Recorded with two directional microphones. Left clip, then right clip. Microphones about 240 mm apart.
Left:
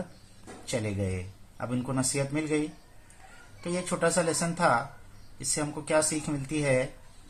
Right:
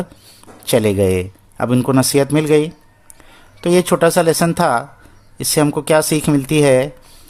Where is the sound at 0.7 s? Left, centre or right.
Right.